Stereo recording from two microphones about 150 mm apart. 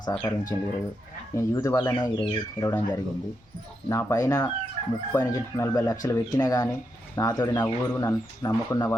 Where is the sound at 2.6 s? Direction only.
15° left (ahead or behind).